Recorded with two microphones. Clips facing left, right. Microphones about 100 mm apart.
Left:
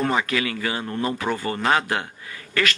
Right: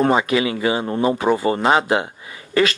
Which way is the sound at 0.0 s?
25° right (ahead or behind).